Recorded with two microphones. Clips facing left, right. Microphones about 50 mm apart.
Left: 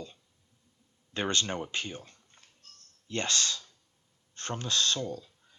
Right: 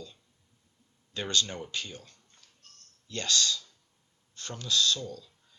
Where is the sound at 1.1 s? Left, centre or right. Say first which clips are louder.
Left 1 dB; left.